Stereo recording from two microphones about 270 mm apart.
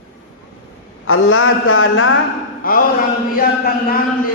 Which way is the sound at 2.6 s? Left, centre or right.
Left.